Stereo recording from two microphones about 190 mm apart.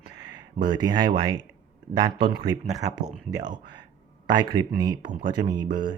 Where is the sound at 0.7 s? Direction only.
20° right (ahead or behind).